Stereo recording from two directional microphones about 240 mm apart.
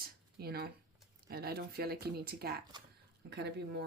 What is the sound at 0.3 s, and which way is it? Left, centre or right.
Speech, right.